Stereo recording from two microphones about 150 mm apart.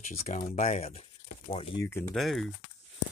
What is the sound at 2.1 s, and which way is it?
Speech, centre (ahead or behind).